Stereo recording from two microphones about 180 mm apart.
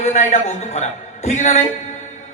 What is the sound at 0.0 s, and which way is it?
A man's voice, 40° left (ahead or behind).